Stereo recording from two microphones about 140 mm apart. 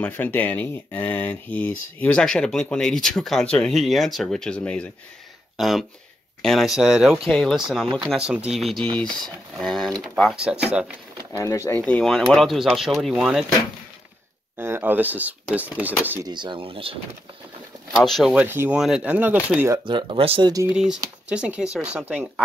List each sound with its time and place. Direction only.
0.0 s speech: 15° left (ahead or behind)
10.3 s speech: 5° right (ahead or behind)
11.3 s speech: 20° left (ahead or behind)
11.8 s speech: 5° left (ahead or behind)
14.6 s speech: 15° right (ahead or behind)
16.2 s speech: 30° right (ahead or behind)
17.9 s speech: centre (ahead or behind)
19.8 s speech: 35° right (ahead or behind)
20.7 s speech: 5° right (ahead or behind)